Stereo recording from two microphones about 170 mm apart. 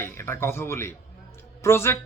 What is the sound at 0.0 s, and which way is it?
A man's voice, 15° left (ahead or behind).